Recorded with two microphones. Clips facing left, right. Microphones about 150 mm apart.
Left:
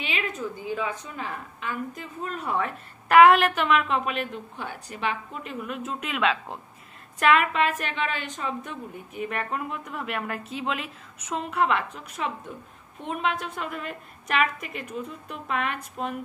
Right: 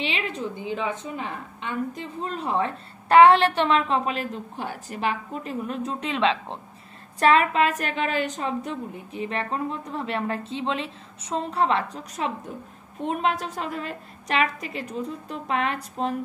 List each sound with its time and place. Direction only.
0.0 s a woman's voice: 30° right (ahead or behind)